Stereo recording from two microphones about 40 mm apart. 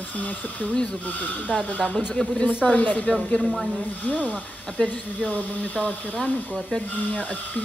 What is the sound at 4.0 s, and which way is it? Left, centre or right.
Speech, left.